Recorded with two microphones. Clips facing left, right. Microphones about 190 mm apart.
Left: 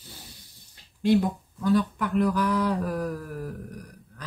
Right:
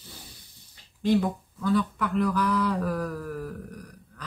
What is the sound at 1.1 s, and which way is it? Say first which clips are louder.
Speech: left 1 dB; 15° left (ahead or behind).